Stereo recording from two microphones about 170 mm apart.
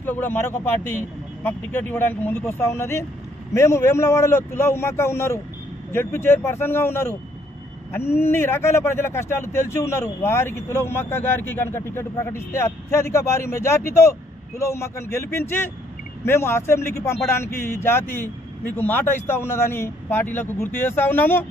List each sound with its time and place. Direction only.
0.0 s a man's voice: 10° left (ahead or behind)